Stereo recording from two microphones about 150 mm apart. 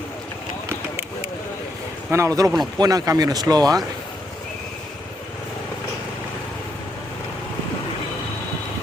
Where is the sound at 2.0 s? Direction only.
20° right (ahead or behind).